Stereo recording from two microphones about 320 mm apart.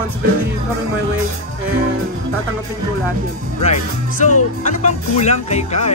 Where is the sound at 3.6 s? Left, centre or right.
Left.